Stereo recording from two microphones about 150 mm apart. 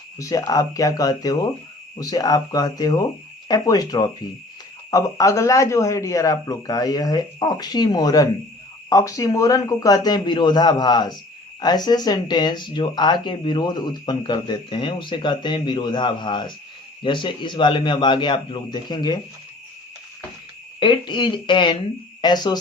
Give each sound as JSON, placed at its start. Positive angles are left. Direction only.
{"t": 0.2, "sound": "speech", "side_deg": 25}
{"t": 20.7, "sound": "speech", "side_deg": 35}